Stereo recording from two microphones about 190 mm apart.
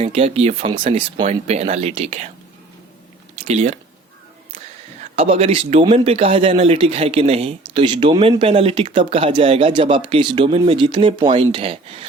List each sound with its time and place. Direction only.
0.0 s speech: 35° right (ahead or behind)
3.4 s speech: 35° right (ahead or behind)